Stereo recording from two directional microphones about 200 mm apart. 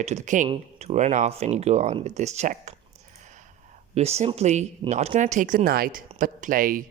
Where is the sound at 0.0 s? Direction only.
35° right (ahead or behind).